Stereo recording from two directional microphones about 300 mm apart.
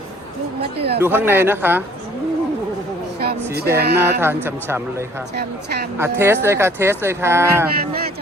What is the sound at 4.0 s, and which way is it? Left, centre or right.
Speech, centre.